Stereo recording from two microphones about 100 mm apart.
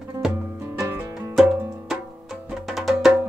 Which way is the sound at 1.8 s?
5° right (ahead or behind).